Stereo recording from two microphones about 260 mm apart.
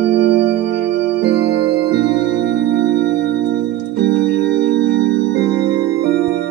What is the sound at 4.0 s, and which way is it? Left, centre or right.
Music, right.